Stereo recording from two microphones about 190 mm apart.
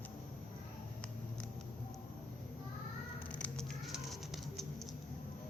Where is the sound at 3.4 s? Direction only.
Centre (ahead or behind).